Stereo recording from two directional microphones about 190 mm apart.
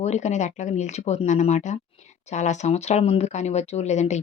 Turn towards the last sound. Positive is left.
turn(degrees=35)  # may be behind; listen again after turning